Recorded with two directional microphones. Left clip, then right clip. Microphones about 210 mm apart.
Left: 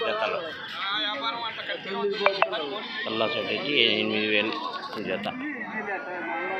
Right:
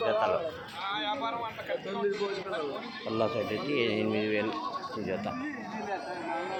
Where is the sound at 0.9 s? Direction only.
60° right (ahead or behind).